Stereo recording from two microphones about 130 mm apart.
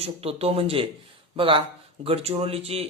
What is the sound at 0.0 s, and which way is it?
Speech, 50° right (ahead or behind).